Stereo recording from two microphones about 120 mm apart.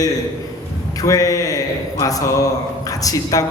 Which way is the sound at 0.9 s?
30° left (ahead or behind).